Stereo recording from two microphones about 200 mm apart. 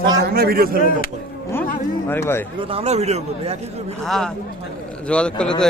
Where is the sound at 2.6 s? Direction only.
30° right (ahead or behind).